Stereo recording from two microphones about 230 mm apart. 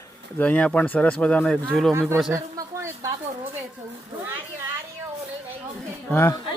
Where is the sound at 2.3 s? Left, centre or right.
Centre.